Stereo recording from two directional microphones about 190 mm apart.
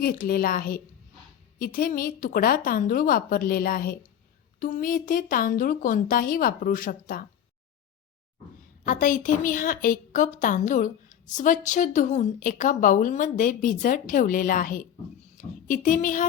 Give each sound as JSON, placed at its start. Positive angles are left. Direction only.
{"t": 0.0, "sound": "a woman's voice", "side_deg": 50}
{"t": 8.8, "sound": "a woman's voice", "side_deg": 45}